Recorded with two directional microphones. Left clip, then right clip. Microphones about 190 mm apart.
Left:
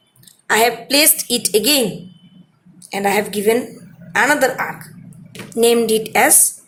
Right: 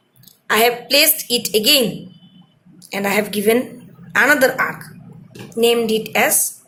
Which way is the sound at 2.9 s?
15° left (ahead or behind).